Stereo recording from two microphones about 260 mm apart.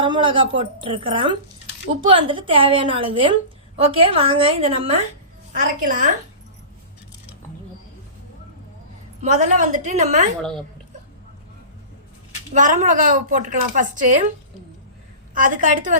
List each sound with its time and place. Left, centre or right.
0.0 s a woman's voice: centre
9.2 s a woman's voice: right
12.5 s a woman's voice: right
15.4 s a woman's voice: right